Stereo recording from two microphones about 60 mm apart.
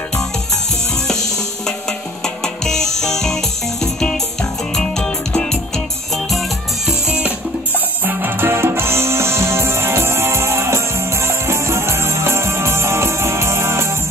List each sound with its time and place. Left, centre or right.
0.9 s music: centre
7.1 s music: right